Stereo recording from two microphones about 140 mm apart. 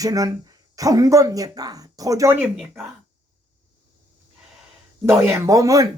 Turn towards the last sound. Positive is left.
turn(degrees=-25)  # may be behind; listen again after turning